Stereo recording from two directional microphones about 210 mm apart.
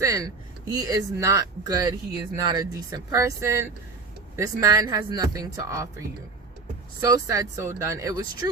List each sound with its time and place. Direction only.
0.0 s speech: 15° right (ahead or behind)
4.4 s speech: 15° right (ahead or behind)
7.0 s speech: 15° right (ahead or behind)